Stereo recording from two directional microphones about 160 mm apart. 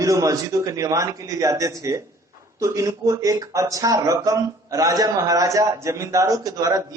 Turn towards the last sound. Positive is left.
turn(degrees=-25)  # may be behind; listen again after turning